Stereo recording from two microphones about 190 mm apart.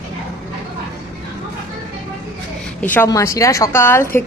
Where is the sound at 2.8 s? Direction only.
10° left (ahead or behind).